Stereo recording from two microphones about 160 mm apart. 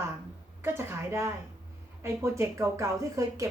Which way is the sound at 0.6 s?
15° right (ahead or behind).